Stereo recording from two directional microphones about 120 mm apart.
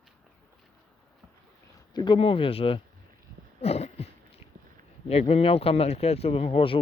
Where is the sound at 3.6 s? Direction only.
60° left (ahead or behind).